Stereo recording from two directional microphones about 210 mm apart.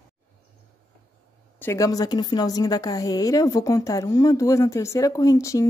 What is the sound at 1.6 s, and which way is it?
A woman's voice, 15° left (ahead or behind).